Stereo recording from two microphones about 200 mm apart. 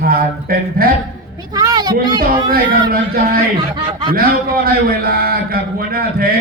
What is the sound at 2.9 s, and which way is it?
Speech, 50° right (ahead or behind).